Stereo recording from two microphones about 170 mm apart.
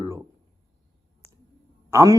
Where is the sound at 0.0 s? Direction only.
20° right (ahead or behind).